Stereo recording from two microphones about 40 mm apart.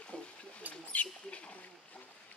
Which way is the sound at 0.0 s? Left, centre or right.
Left.